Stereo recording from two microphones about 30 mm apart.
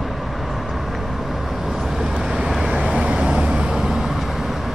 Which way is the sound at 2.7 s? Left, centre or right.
Right.